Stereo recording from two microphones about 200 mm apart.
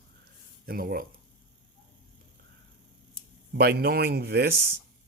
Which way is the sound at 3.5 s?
50° right (ahead or behind).